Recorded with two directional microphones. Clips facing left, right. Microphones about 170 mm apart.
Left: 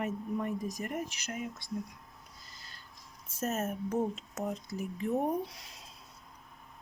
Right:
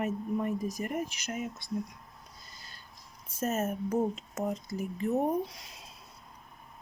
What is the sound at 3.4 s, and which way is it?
Speech, 5° right (ahead or behind).